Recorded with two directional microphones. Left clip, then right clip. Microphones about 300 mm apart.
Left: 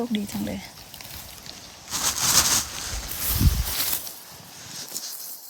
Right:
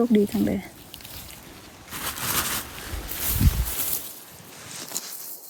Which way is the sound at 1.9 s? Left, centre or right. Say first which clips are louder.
Left 6 dB; centre.